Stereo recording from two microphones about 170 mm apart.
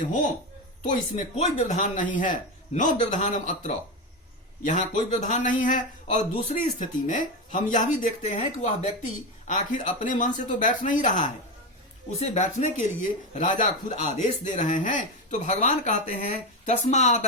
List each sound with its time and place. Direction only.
0.8 s speech: 45° left (ahead or behind)